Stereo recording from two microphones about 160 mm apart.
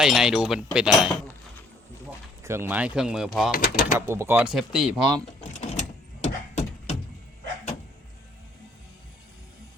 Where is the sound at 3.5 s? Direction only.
65° left (ahead or behind).